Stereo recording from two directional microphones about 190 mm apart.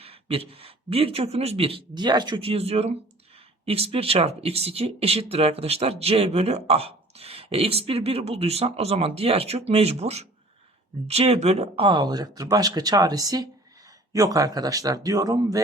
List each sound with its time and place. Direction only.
0.0 s speech: 30° right (ahead or behind)